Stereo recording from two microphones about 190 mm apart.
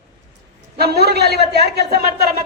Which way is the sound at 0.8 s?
55° right (ahead or behind).